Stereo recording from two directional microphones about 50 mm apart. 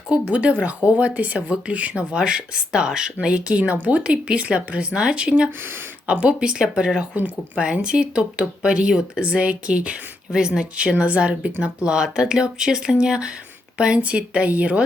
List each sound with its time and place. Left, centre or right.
0.1 s speech: right
9.2 s speech: right